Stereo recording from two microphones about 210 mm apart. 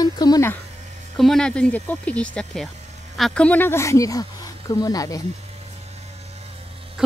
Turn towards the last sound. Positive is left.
turn(degrees=-5)  # may be behind; listen again after turning